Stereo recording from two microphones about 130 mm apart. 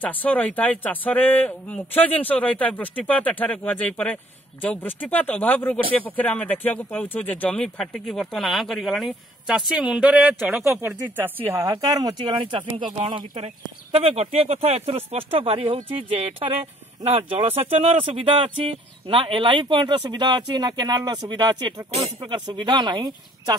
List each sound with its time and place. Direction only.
0.0 s a man's voice: 10° left (ahead or behind); by 10.8 s 5° right (ahead or behind)
11.1 s speech: 15° right (ahead or behind)
11.6 s speech: 30° right (ahead or behind)
13.9 s speech: 50° right (ahead or behind)
17.2 s speech: 45° right (ahead or behind)